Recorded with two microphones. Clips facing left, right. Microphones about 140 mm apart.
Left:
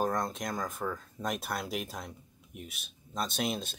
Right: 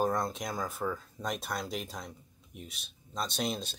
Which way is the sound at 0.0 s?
Centre (ahead or behind).